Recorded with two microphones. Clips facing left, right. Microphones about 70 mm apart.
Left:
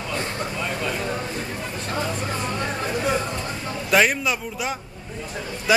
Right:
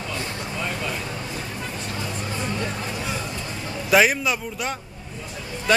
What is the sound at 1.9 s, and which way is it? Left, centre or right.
Vehicle, left.